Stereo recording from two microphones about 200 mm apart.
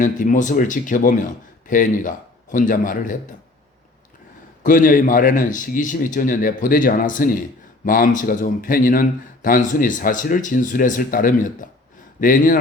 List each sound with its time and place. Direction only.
0.0 s a man's voice: 40° left (ahead or behind)
4.6 s speech: 45° left (ahead or behind)